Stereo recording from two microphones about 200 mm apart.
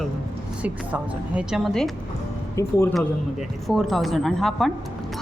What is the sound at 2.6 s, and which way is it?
Speech, 15° left (ahead or behind).